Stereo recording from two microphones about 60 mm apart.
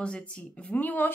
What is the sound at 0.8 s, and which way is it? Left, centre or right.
Speech, left.